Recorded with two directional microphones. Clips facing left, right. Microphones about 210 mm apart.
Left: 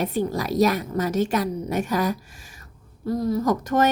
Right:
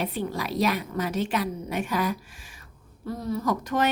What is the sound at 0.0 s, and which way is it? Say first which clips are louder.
A woman's voice: left 5 dB; 45° left (ahead or behind).